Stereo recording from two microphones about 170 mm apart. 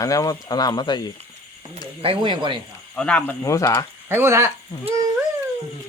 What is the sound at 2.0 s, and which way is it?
Speech, 30° right (ahead or behind).